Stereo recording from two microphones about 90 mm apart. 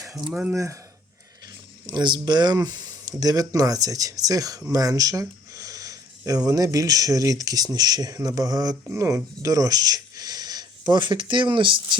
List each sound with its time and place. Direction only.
0.5 s speech: 35° right (ahead or behind)
1.9 s speech: 55° right (ahead or behind)
8.9 s speech: 35° right (ahead or behind); by 11.9 s 65° right (ahead or behind)